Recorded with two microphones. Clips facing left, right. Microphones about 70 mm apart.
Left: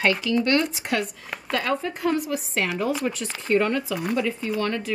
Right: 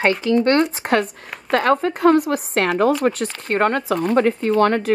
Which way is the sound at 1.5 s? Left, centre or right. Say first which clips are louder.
Right 9 dB; right.